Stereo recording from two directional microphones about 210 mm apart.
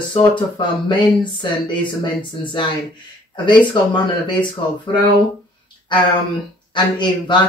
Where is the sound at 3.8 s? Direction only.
20° left (ahead or behind).